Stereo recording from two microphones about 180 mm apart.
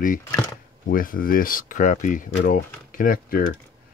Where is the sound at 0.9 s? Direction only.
50° left (ahead or behind).